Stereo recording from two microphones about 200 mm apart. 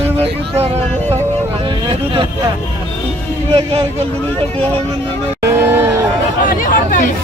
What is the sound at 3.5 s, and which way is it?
Speech, 30° right (ahead or behind).